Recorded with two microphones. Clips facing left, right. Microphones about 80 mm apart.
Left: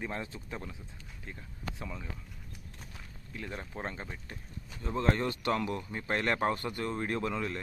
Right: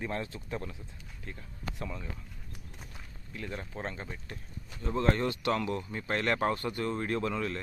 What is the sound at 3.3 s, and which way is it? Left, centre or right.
Speech, centre.